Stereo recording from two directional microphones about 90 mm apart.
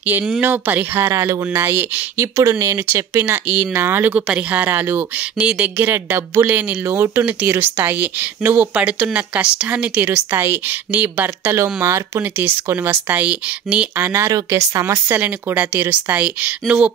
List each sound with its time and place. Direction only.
0.0 s speech: 15° right (ahead or behind)
1.1 s speech: 35° right (ahead or behind)
3.1 s speech: 20° right (ahead or behind)
6.4 s speech: 20° right (ahead or behind)
10.0 s speech: 25° right (ahead or behind)
14.1 s speech: 35° right (ahead or behind)
15.1 s a woman's voice: 20° right (ahead or behind)